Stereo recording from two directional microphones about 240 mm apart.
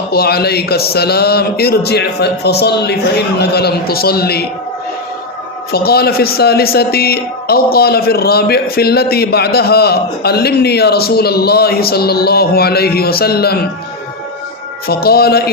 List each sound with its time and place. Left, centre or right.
0.1 s speech: left
5.7 s speech: left
14.8 s speech: left